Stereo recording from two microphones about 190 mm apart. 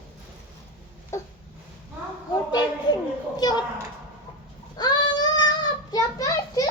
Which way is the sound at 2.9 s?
25° left (ahead or behind).